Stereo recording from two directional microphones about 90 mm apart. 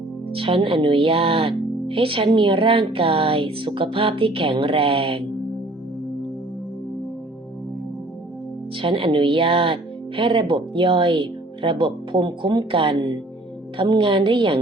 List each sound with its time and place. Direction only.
0.3 s speech: 90° right
8.8 s speech: 70° right (ahead or behind)